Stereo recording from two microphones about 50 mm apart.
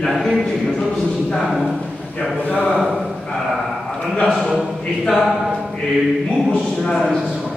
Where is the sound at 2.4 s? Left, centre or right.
Left.